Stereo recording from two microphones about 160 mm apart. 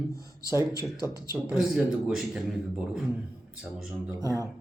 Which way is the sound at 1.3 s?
5° right (ahead or behind).